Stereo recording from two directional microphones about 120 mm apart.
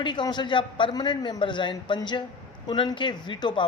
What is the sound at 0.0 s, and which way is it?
A man's voice, 40° left (ahead or behind).